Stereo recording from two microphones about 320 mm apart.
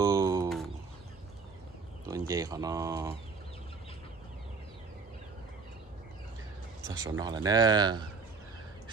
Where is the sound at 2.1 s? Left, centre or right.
Centre.